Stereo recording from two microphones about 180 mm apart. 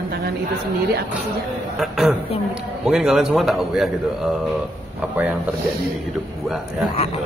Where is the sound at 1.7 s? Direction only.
Centre (ahead or behind).